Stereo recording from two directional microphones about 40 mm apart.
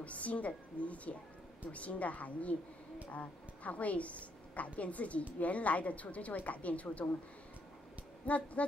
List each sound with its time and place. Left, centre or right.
0.0 s a woman's voice: left
8.3 s a woman's voice: left